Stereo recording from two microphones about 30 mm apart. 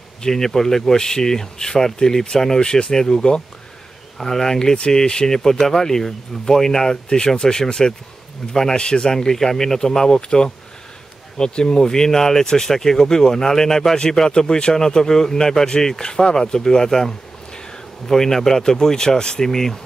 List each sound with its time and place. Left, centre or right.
0.2 s speech: centre
4.2 s speech: centre; by 9.1 s left
9.1 s speech: centre
14.3 s speech: left
17.6 s insect: centre
18.7 s speech: centre